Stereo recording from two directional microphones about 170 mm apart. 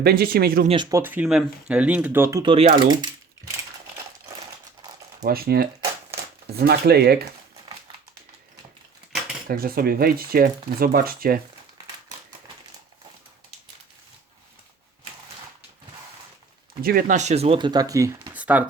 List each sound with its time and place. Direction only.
0.0 s speech: 65° right (ahead or behind)
0.9 s speech: 15° right (ahead or behind)
2.4 s speech: 35° right (ahead or behind)
5.2 s speech: 65° right (ahead or behind)
9.5 s speech: 60° right (ahead or behind)
16.8 s speech: 60° right (ahead or behind); by 18.1 s 20° right (ahead or behind)
18.3 s a sound: 10° right (ahead or behind)